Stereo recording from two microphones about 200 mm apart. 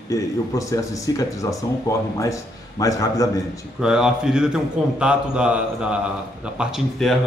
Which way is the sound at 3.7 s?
5° right (ahead or behind).